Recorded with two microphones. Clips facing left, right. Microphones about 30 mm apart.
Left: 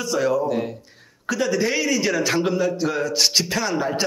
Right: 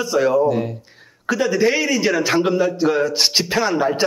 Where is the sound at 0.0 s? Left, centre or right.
Centre.